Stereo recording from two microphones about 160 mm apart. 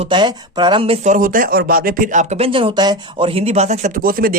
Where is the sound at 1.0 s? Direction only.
55° right (ahead or behind).